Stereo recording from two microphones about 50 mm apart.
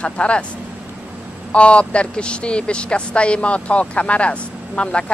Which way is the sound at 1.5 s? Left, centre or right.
Left.